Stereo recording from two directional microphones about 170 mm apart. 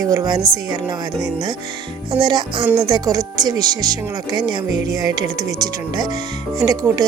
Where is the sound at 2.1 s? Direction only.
20° right (ahead or behind).